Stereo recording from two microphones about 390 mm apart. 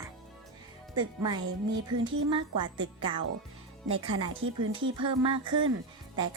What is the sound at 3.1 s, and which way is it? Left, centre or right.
Speech, centre.